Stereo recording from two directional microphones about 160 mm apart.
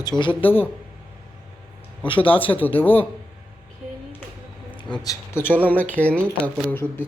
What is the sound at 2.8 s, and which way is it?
Speech, 10° left (ahead or behind).